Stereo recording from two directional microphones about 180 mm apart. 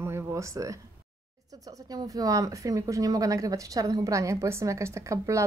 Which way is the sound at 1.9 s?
20° right (ahead or behind).